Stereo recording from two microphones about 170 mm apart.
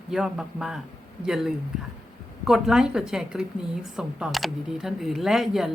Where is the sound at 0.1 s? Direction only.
5° right (ahead or behind).